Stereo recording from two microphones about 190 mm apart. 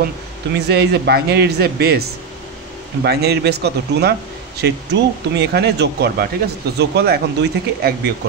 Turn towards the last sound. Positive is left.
turn(degrees=-60)  # may be behind; listen again after turning